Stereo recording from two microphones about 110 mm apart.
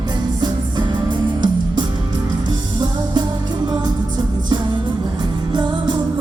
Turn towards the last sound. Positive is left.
turn(degrees=-45)  # may be behind; listen again after turning